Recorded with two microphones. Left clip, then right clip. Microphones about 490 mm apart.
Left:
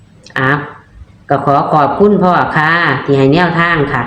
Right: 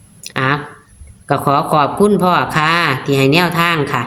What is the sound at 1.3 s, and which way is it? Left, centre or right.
Speech, right.